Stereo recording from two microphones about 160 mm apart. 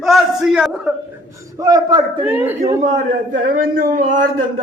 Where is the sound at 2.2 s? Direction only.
10° right (ahead or behind).